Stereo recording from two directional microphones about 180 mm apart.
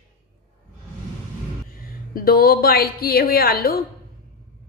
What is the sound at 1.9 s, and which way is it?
A woman's voice, 55° left (ahead or behind).